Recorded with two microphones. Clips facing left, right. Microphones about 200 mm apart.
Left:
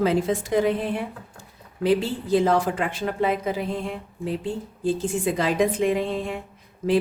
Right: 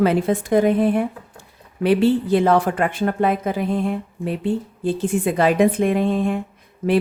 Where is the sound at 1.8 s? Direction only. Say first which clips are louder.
Right 6 dB; 65° right (ahead or behind).